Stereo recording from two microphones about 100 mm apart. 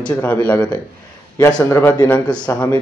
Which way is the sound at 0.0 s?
15° left (ahead or behind).